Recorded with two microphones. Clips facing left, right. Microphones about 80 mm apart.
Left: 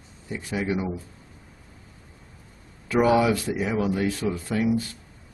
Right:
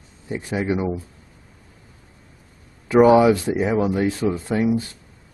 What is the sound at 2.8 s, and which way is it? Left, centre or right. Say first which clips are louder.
Speech: right 7 dB; right.